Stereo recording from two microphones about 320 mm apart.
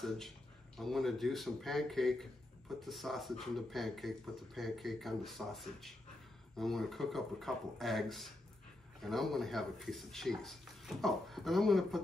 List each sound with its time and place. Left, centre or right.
0.7 s speech: centre